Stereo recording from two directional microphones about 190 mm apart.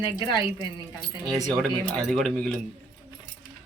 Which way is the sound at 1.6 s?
Centre (ahead or behind).